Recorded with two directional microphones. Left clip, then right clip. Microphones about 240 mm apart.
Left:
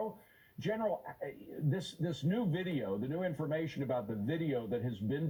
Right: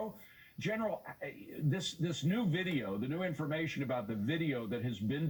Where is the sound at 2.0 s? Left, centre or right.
Centre.